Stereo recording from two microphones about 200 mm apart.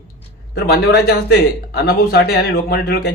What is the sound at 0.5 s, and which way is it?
Speech, 50° left (ahead or behind).